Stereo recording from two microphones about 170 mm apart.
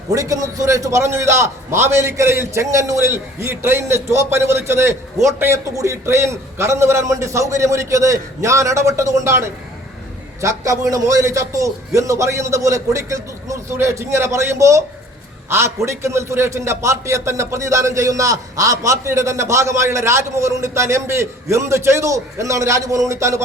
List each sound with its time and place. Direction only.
0.1 s a man's voice: 20° right (ahead or behind)